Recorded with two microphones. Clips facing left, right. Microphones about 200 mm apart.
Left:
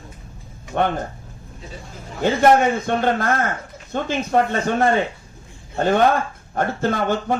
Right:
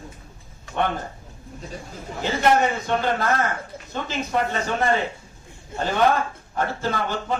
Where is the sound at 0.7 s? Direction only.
50° left (ahead or behind).